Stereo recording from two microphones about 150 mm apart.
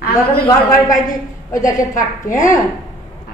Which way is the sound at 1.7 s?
25° left (ahead or behind).